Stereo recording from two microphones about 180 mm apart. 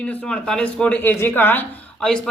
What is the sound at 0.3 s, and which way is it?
Speech, 5° left (ahead or behind).